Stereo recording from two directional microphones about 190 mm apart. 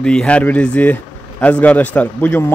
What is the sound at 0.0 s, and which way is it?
A man's voice, 5° left (ahead or behind).